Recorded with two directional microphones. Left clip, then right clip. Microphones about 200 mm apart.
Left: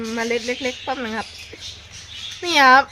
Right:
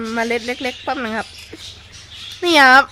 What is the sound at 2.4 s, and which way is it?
Speech, 50° right (ahead or behind).